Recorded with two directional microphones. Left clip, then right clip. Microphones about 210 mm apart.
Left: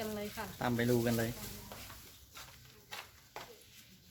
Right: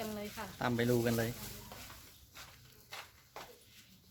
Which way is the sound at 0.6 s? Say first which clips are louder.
Even; 20° right (ahead or behind).